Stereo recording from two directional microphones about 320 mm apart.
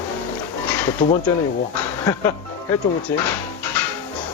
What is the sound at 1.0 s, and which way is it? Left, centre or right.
Speech, left.